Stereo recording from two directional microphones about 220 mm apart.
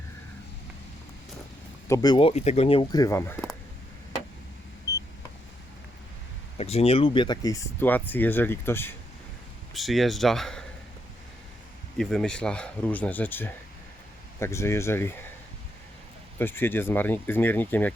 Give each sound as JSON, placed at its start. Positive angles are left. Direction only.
{"t": 1.9, "sound": "speech", "side_deg": 15}
{"t": 6.6, "sound": "speech", "side_deg": 25}
{"t": 9.7, "sound": "speech", "side_deg": 0}
{"t": 11.9, "sound": "speech", "side_deg": 5}
{"t": 16.4, "sound": "speech", "side_deg": 10}